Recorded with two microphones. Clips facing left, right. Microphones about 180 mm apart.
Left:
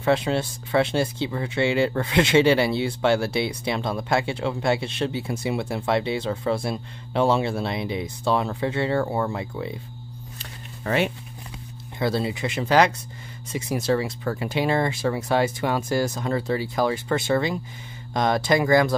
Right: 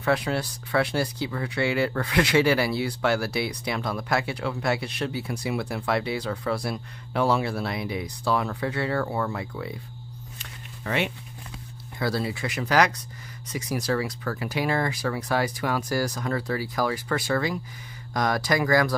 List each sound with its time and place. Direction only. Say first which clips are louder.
0.0 s speech: left 3 dB; 25° left (ahead or behind)
10.4 s a sound: left 4 dB; 40° left (ahead or behind)
12.0 s speech: left 3 dB; 25° left (ahead or behind)